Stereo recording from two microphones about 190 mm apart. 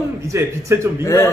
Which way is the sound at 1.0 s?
15° left (ahead or behind).